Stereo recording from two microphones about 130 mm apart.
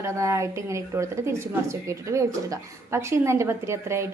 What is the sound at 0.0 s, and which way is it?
A woman's voice, 25° right (ahead or behind).